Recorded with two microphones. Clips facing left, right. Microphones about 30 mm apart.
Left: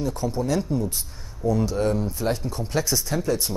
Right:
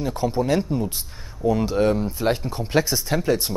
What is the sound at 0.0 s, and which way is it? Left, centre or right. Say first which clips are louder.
Speech: right 3 dB; right.